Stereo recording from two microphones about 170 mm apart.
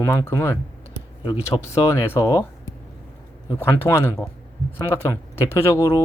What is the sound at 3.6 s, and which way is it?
Speech, 15° left (ahead or behind).